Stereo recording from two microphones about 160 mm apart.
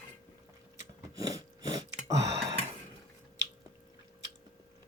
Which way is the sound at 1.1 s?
25° right (ahead or behind).